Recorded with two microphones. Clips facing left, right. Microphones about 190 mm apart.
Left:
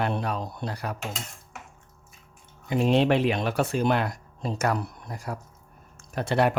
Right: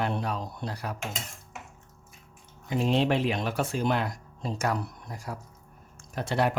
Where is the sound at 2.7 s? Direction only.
60° left (ahead or behind).